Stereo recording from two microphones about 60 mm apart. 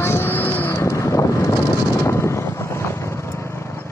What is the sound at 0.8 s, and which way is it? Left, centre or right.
Boat, left.